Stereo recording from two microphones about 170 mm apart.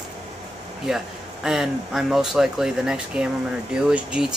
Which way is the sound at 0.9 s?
5° right (ahead or behind).